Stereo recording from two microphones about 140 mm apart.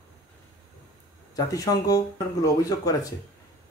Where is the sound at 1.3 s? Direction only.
25° left (ahead or behind).